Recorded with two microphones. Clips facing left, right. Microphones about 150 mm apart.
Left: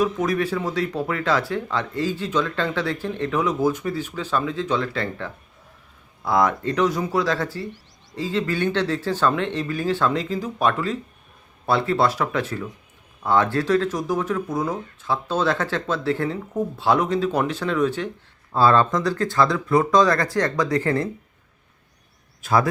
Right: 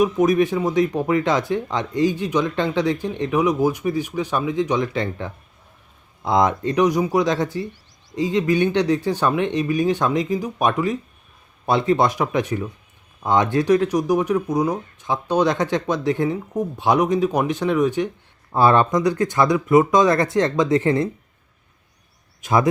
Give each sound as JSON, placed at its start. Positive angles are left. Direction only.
{"t": 0.0, "sound": "speech", "side_deg": -15}
{"t": 22.4, "sound": "speech", "side_deg": -20}